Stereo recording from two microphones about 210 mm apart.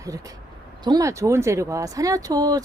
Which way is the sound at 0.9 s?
15° right (ahead or behind).